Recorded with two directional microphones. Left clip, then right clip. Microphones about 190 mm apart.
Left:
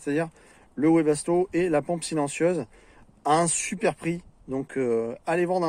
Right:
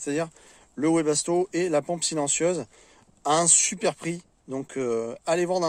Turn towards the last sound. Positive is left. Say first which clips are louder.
# even
turn(degrees=-25)  # may be behind; listen again after turning